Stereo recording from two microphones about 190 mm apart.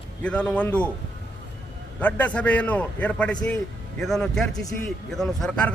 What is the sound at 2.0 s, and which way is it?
A man's voice, 10° left (ahead or behind).